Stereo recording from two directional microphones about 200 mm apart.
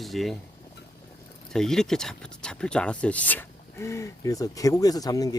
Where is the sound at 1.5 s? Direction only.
Centre (ahead or behind).